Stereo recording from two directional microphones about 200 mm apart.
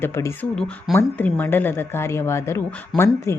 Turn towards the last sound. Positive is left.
turn(degrees=10)  # may be behind; listen again after turning